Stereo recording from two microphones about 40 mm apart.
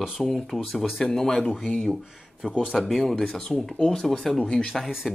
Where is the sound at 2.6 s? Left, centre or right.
Centre.